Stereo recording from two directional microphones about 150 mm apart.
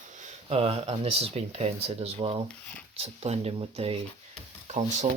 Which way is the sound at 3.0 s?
45° right (ahead or behind).